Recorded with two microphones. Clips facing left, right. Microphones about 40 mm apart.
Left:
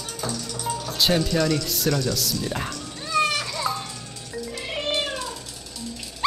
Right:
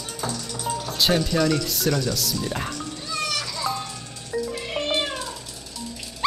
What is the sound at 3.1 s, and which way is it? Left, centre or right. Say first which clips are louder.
Music: left 7 dB; left.